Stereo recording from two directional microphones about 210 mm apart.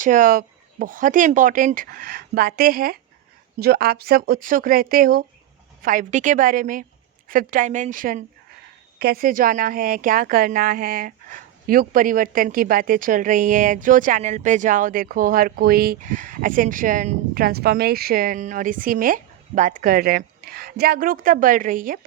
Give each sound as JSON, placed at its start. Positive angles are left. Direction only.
{"t": 0.0, "sound": "speech", "side_deg": -40}